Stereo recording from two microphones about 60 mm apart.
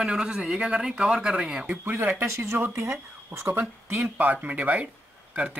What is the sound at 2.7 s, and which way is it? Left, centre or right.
Speech, right.